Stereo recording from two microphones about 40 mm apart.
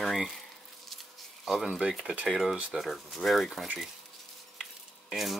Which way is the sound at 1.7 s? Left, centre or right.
Centre.